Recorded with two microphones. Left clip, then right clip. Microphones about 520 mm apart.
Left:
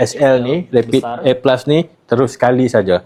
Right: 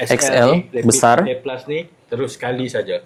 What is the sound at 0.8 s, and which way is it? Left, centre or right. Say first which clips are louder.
Speech: right 5 dB; right.